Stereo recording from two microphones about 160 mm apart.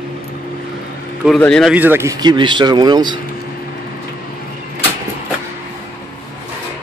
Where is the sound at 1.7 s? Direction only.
10° right (ahead or behind); by 3.2 s 25° right (ahead or behind).